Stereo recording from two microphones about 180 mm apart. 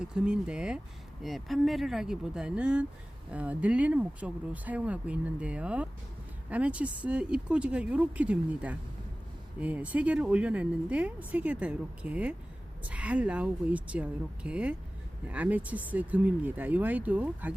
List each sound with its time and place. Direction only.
0.0 s speech: 5° right (ahead or behind)